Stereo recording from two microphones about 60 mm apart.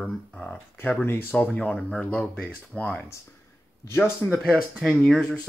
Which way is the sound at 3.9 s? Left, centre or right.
Left.